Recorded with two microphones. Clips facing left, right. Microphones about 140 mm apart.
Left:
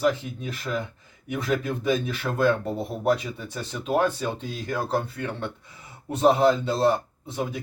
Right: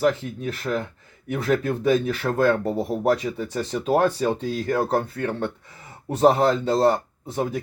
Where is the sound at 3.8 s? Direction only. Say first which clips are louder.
Right 3 dB; 40° right (ahead or behind).